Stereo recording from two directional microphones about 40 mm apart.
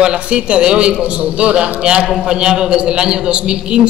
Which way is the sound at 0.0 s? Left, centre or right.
Right.